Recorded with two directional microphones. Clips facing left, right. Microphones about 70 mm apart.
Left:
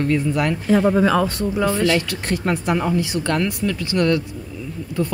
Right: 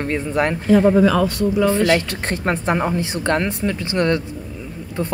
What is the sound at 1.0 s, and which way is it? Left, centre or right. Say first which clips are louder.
Speech: right 2 dB; left.